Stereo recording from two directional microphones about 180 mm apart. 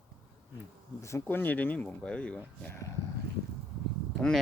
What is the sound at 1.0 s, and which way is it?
Speech, 15° left (ahead or behind).